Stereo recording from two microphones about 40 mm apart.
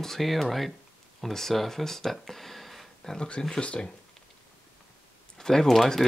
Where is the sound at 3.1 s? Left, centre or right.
Left.